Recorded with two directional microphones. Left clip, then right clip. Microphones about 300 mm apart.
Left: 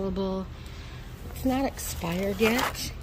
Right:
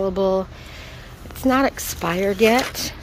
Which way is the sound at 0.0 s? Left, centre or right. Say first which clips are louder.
Right 12 dB; centre.